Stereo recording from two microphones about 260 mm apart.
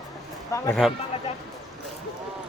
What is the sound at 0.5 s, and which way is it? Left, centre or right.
Speech, centre.